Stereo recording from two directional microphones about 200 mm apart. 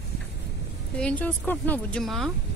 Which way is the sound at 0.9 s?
5° left (ahead or behind).